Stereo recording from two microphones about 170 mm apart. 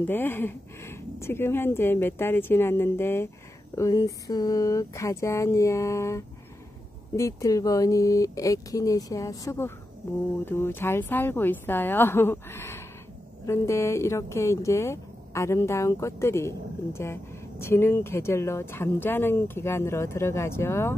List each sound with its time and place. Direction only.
0.0 s speech: 10° left (ahead or behind)